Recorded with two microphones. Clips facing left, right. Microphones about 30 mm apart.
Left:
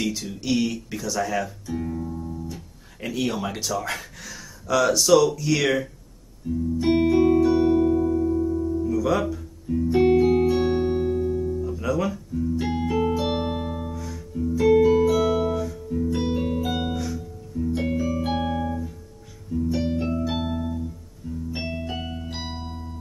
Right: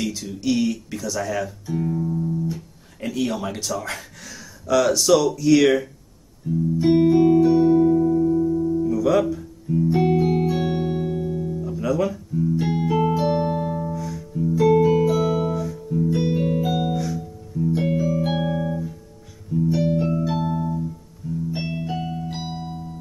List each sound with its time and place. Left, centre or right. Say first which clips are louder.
0.0 s speech: right 2 dB; centre
6.5 s music: right 3 dB; centre
7.5 s music: right 3 dB; left; by 9.2 s centre
9.3 s guitar: right 3 dB; centre
10.0 s music: left 2 dB; centre
13.4 s music: right 4 dB; left
13.9 s music: right 4 dB; centre
15.0 s music: even; centre
20.3 s music: right 3 dB; centre
21.5 s music: right 1 dB; centre